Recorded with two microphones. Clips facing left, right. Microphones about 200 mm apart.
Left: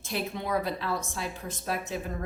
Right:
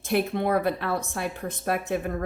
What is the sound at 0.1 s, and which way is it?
Speech, 60° right (ahead or behind).